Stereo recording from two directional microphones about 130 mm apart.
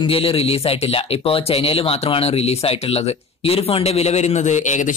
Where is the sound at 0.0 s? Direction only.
45° left (ahead or behind).